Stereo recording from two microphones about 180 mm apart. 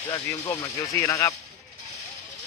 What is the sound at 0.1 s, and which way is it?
Speech, 20° left (ahead or behind).